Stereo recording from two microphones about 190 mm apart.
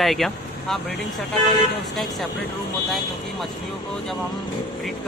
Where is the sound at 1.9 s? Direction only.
Centre (ahead or behind).